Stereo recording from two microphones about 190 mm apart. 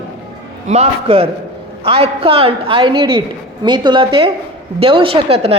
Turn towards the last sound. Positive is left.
turn(degrees=-30)  # may be behind; listen again after turning